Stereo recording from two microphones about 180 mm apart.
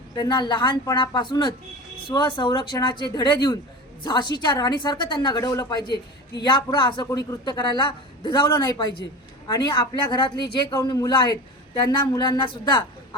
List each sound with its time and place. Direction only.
0.2 s speech: 25° left (ahead or behind)